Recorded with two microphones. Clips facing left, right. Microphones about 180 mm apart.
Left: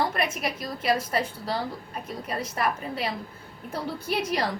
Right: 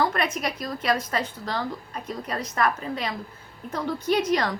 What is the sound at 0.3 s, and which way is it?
Speech, 5° left (ahead or behind).